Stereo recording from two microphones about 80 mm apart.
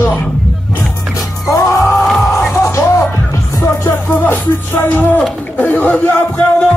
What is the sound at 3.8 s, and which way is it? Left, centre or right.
Music, left.